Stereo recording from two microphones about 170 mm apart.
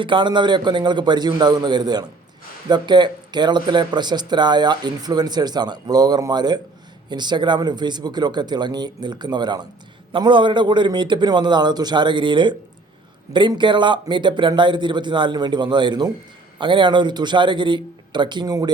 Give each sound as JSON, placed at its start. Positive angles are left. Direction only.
{"t": 0.0, "sound": "speech", "side_deg": -30}